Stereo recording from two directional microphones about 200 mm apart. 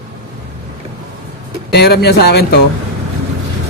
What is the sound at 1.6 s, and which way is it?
Speech, 55° left (ahead or behind).